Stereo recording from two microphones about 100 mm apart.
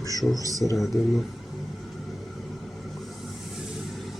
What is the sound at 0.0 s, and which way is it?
Speech, 35° left (ahead or behind).